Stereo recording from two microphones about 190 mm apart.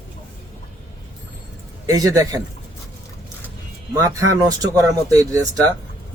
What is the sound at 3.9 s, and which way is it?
Speech, 15° right (ahead or behind).